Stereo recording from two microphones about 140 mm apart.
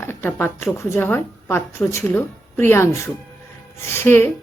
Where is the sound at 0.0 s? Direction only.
15° left (ahead or behind).